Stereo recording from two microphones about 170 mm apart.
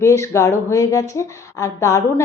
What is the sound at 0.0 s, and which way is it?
A woman's voice, 15° left (ahead or behind).